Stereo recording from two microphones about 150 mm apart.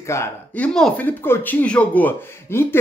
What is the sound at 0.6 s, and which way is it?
Speech, 5° left (ahead or behind).